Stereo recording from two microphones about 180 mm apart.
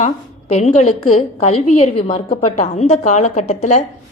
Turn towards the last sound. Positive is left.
turn(degrees=40)  # may be behind; listen again after turning